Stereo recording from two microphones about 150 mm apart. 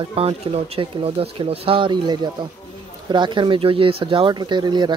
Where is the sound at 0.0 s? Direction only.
40° right (ahead or behind).